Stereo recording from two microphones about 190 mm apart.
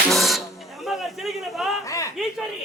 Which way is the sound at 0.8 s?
Centre (ahead or behind).